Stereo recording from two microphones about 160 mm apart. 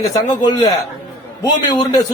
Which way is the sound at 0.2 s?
25° left (ahead or behind).